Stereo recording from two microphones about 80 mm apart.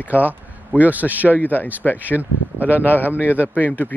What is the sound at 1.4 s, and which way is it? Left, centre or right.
Speech, left.